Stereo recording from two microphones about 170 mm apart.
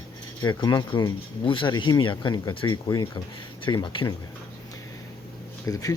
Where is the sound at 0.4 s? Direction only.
25° left (ahead or behind).